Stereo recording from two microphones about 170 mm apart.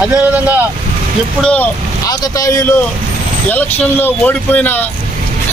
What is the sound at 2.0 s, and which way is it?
Speech, 20° left (ahead or behind).